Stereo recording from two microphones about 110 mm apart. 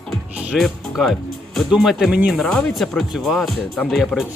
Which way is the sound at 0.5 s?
Centre (ahead or behind).